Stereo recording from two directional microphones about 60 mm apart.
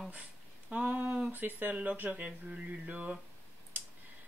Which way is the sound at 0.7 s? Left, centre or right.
Right.